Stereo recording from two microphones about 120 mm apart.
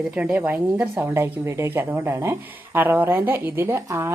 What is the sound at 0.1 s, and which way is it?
A woman's voice, 10° right (ahead or behind).